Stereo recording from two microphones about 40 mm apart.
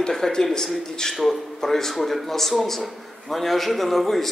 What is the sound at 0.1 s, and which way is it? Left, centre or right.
A man's voice, centre.